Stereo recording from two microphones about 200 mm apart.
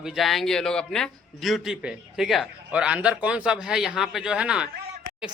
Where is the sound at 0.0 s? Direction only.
Centre (ahead or behind).